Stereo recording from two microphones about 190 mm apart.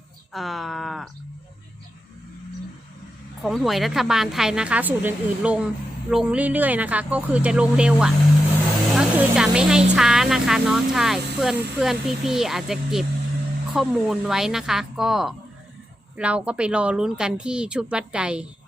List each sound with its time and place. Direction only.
0.3 s a woman's voice: centre (ahead or behind)
3.4 s a woman's voice: centre (ahead or behind)